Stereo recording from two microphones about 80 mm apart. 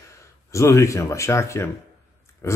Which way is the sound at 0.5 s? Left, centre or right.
Left.